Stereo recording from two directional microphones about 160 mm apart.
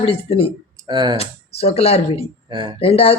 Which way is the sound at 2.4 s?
30° right (ahead or behind).